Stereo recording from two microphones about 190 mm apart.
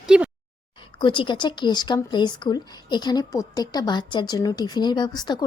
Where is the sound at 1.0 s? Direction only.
25° left (ahead or behind).